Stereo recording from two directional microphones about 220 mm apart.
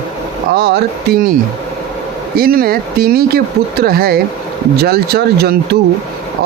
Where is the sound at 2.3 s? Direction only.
40° right (ahead or behind).